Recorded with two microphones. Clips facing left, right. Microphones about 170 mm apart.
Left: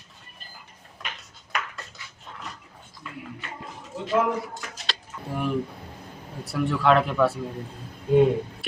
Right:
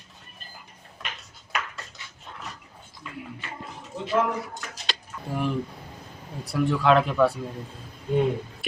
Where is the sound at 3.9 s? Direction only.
15° right (ahead or behind).